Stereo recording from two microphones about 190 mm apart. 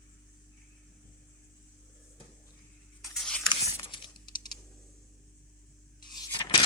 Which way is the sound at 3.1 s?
5° left (ahead or behind).